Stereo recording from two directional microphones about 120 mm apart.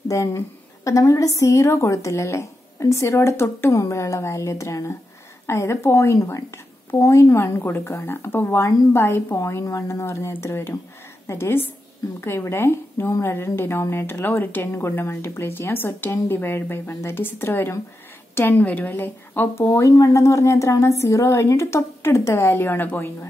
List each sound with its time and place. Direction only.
0.1 s a woman's voice: 25° left (ahead or behind)